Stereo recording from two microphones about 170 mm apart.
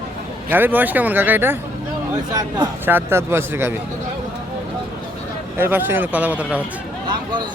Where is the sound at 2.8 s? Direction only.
15° right (ahead or behind).